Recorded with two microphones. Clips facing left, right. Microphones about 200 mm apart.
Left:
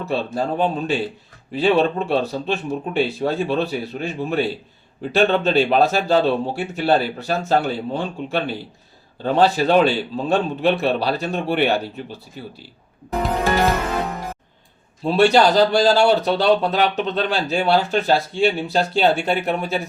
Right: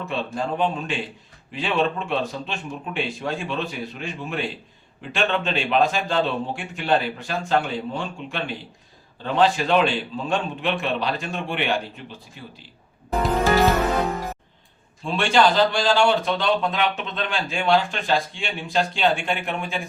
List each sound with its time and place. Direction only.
0.0 s speech: 35° left (ahead or behind)
15.0 s speech: 40° left (ahead or behind)